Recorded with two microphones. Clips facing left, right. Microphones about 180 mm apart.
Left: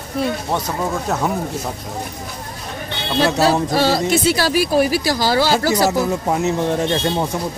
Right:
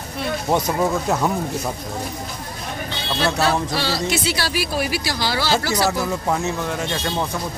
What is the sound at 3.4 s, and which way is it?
Speech, 40° left (ahead or behind).